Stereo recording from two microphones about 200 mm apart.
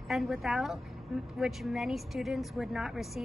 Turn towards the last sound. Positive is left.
turn(degrees=0)  # may be behind; listen again after turning